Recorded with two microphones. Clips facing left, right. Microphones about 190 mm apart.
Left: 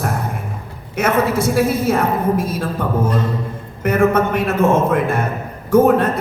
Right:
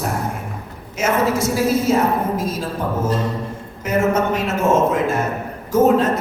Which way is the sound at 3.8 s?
60° left (ahead or behind).